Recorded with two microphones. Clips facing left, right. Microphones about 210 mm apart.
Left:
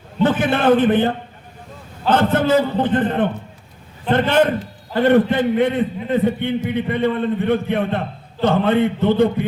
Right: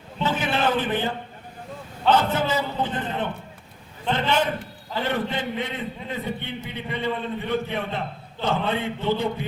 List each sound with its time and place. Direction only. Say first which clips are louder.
0.2 s a man's voice: left 7 dB; 55° left (ahead or behind)